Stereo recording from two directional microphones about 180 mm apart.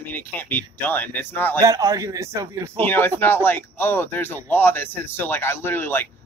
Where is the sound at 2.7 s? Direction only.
10° left (ahead or behind).